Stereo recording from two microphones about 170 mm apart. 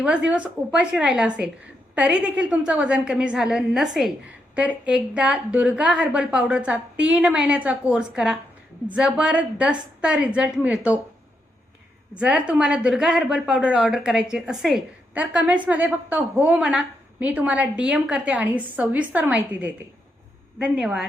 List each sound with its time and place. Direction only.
0.0 s a woman's voice: 5° right (ahead or behind)
12.1 s a woman's voice: 5° right (ahead or behind)